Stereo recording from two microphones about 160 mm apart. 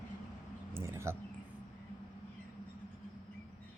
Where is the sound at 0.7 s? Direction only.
15° right (ahead or behind).